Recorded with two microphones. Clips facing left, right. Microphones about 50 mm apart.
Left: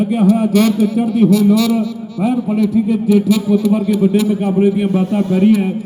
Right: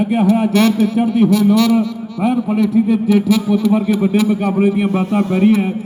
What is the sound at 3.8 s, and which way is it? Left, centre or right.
Speech, right.